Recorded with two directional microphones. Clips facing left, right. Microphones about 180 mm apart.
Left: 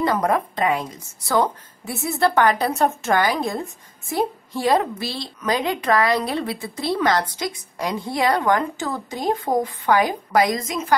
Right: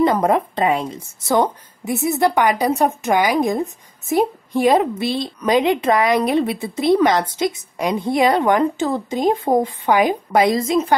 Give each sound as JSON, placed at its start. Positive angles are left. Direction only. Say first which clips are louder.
{"t": 0.0, "sound": "a woman's voice", "louder": "right 4 dB", "side_deg": -20}